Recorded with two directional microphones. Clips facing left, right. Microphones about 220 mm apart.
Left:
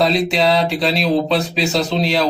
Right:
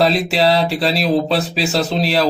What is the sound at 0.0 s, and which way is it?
Speech, 5° right (ahead or behind).